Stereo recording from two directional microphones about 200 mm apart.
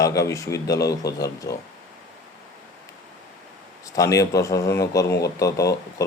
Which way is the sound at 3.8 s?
15° left (ahead or behind).